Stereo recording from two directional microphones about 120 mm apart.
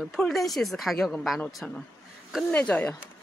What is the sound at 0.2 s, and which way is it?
Speech, centre (ahead or behind).